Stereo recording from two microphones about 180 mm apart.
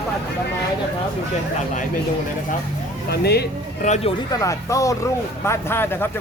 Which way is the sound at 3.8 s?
40° left (ahead or behind).